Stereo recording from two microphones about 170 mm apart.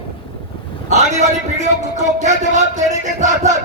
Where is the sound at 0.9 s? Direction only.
45° right (ahead or behind).